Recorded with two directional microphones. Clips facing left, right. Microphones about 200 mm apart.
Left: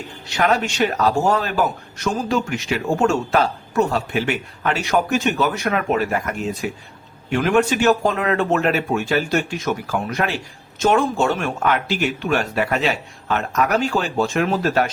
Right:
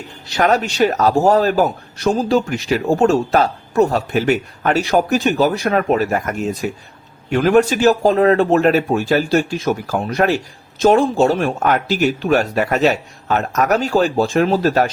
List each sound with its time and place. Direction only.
0.3 s speech: 40° right (ahead or behind)